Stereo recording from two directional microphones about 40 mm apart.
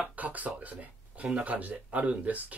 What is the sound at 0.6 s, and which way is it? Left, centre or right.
Speech, right.